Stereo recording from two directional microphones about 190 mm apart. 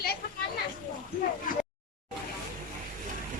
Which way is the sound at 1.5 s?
45° left (ahead or behind).